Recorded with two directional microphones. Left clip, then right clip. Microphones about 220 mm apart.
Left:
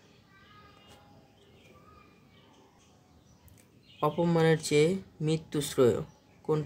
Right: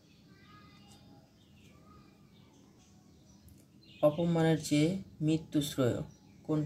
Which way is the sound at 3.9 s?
50° left (ahead or behind).